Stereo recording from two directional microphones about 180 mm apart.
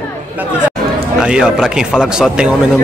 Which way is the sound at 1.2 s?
5° right (ahead or behind).